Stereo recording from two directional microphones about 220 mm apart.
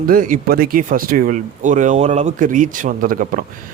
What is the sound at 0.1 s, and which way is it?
Speech, 40° right (ahead or behind).